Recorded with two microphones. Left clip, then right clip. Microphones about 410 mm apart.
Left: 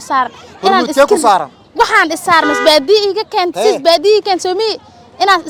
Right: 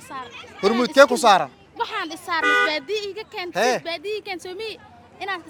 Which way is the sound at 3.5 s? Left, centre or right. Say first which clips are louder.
Left 4 dB; right.